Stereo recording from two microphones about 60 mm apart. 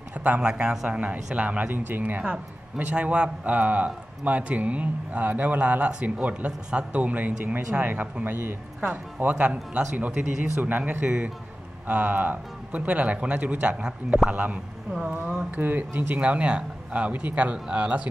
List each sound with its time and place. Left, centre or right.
0.1 s a man's voice: right
0.4 s a man's voice: centre
14.3 s a man's voice: right
15.0 s a man's voice: centre
15.6 s speech: right
16.2 s a man's voice: right